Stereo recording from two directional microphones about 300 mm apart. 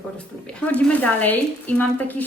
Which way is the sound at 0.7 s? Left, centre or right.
Centre.